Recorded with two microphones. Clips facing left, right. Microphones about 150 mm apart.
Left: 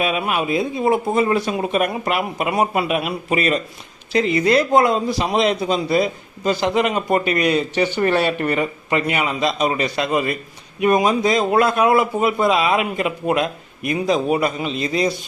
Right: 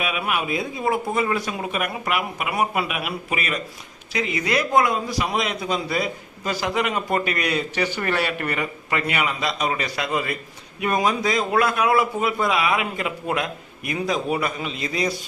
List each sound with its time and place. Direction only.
0.0 s a man's voice: 30° left (ahead or behind)